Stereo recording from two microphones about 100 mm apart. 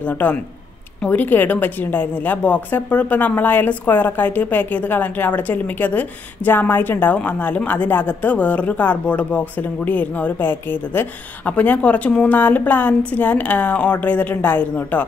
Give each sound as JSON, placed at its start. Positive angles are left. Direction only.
{"t": 0.0, "sound": "a woman's voice", "side_deg": 15}